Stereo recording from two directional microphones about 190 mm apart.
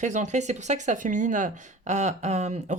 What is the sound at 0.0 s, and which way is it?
Speech, 40° right (ahead or behind).